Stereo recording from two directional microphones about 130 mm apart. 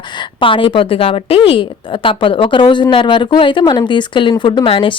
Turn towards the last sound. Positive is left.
turn(degrees=40)  # may be behind; listen again after turning